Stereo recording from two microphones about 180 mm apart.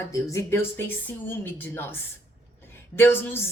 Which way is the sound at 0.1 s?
15° left (ahead or behind).